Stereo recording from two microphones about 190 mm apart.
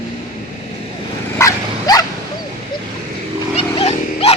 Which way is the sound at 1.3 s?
20° left (ahead or behind).